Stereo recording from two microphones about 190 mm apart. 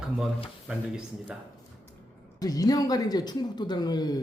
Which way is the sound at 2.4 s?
20° left (ahead or behind).